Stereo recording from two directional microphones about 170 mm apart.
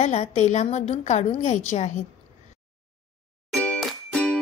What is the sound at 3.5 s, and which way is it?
Music, 5° left (ahead or behind).